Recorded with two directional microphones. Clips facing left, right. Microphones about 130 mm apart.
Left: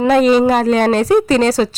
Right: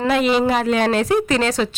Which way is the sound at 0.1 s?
40° left (ahead or behind).